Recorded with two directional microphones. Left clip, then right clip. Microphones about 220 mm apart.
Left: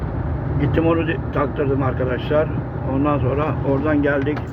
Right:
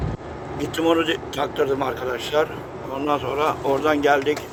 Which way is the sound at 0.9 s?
30° right (ahead or behind).